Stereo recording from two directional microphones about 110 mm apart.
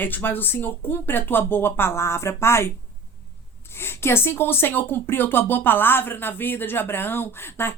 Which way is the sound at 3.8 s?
20° left (ahead or behind).